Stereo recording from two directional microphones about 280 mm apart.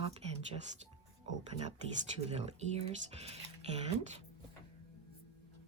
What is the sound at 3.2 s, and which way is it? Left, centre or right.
Speech, right.